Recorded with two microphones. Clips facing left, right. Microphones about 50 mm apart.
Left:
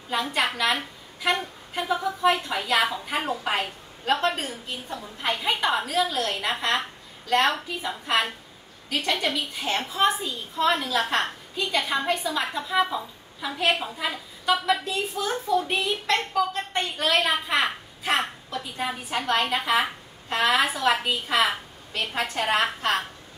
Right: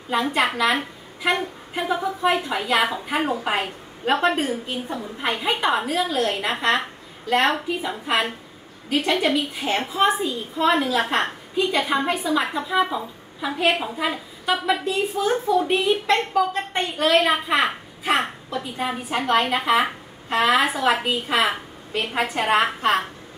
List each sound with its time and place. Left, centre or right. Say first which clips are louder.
0.1 s a woman's voice: right 4 dB; centre